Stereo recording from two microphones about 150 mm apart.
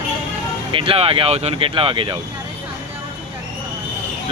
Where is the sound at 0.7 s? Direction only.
35° right (ahead or behind).